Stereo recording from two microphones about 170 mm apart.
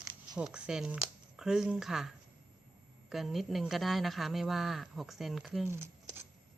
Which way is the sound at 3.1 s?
Centre (ahead or behind).